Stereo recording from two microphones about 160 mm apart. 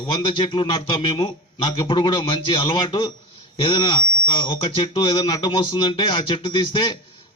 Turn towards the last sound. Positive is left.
turn(degrees=30)  # may be behind; listen again after turning